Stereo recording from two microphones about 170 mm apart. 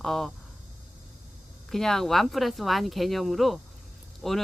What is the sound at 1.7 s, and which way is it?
Speech, centre (ahead or behind).